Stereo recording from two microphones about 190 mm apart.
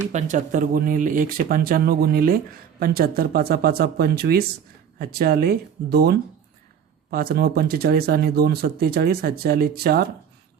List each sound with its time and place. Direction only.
0.1 s speech: 40° right (ahead or behind); by 10.1 s 55° right (ahead or behind)